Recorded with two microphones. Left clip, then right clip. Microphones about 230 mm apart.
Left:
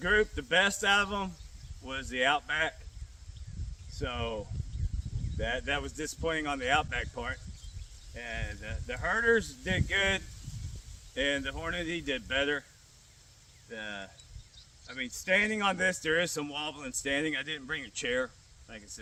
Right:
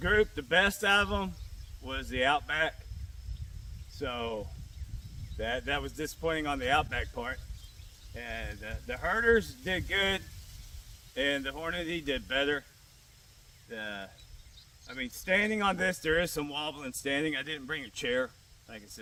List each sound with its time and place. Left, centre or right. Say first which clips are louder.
0.0 s speech: even; centre
3.9 s speech: right 1 dB; centre
13.7 s speech: right 1 dB; centre